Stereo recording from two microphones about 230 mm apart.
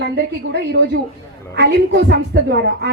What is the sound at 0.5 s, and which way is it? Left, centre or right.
A woman's voice, right.